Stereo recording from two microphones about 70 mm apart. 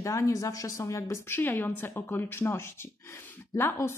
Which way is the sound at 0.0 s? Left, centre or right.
Left.